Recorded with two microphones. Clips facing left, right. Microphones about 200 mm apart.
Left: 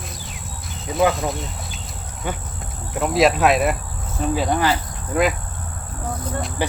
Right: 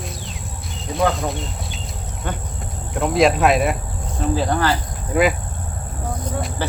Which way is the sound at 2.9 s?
Centre (ahead or behind).